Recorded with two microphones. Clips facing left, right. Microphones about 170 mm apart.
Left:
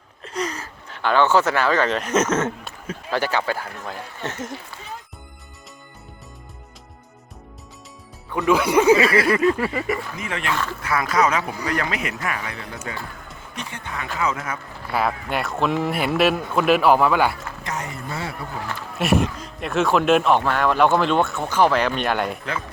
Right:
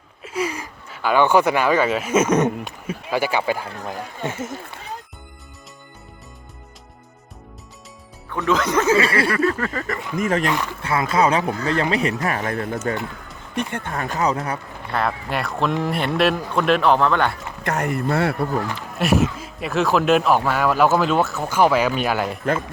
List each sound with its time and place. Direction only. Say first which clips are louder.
0.2 s speech: right 2 dB; 10° right (ahead or behind)
8.3 s speech: left 2 dB; 10° left (ahead or behind)
9.0 s speech: left 2 dB; 30° right (ahead or behind)
9.3 s speech: left 2 dB; 15° left (ahead or behind)
10.2 s speech: right 8 dB; 45° right (ahead or behind)
10.5 s speech: right 1 dB; 15° right (ahead or behind)
10.8 s speech: right 2 dB; 25° right (ahead or behind)
11.5 s speech: right 3 dB; 15° left (ahead or behind)
11.8 s speech: right 6 dB; 30° right (ahead or behind)
14.8 s speech: even; 5° left (ahead or behind)
17.6 s speech: right 10 dB; 60° right (ahead or behind)
18.9 s speech: right 1 dB; centre (ahead or behind)